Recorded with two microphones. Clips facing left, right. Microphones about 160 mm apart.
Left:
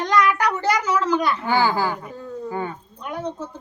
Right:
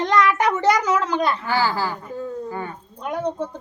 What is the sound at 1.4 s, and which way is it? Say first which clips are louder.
Speech: left 2 dB; 20° left (ahead or behind).